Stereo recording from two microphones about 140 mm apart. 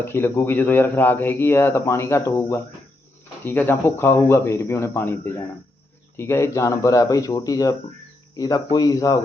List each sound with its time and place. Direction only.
0.0 s speech: 15° left (ahead or behind)